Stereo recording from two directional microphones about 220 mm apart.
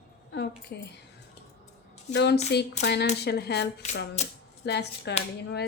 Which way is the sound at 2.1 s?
50° left (ahead or behind).